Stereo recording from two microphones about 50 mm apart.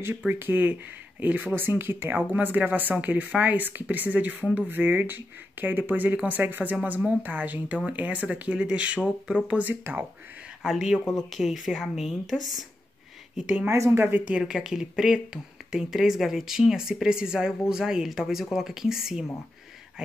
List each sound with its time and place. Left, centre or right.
0.3 s speech: right
1.5 s speech: right
9.9 s speech: right
10.6 s speech: centre
13.7 s a woman's voice: right
13.9 s speech: right
14.4 s speech: centre